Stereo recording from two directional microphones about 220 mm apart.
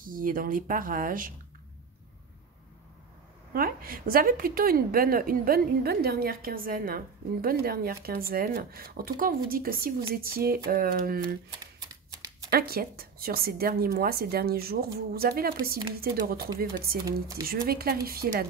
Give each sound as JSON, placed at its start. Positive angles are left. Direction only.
{"t": 0.0, "sound": "speech", "side_deg": -40}
{"t": 3.5, "sound": "speech", "side_deg": -40}
{"t": 11.6, "sound": "shuffling cards", "side_deg": -15}
{"t": 12.4, "sound": "a woman's voice", "side_deg": -45}